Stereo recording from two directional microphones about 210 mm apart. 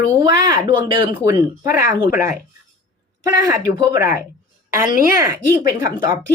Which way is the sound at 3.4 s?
15° right (ahead or behind).